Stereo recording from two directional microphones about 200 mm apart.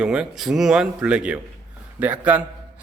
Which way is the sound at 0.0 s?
5° right (ahead or behind).